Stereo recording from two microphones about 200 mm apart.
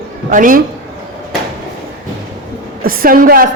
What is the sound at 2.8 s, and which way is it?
Speech, 45° right (ahead or behind).